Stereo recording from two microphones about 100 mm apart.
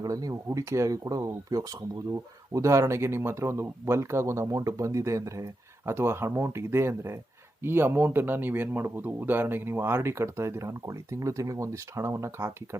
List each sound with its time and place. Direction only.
0.0 s speech: 35° right (ahead or behind)